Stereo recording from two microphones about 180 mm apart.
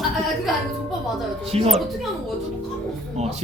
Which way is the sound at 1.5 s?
35° right (ahead or behind).